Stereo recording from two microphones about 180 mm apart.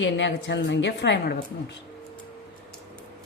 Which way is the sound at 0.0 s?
85° left.